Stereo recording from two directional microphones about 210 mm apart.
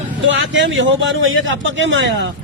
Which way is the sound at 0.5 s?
65° right (ahead or behind).